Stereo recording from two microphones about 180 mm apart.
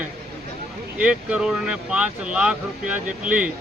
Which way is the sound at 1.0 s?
5° right (ahead or behind).